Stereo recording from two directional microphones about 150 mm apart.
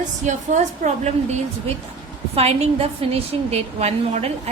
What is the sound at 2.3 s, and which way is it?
A woman's voice, 40° right (ahead or behind).